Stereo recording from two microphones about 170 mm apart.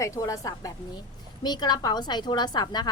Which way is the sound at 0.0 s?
20° left (ahead or behind).